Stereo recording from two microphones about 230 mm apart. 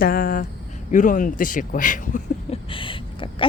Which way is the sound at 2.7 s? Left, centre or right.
Left.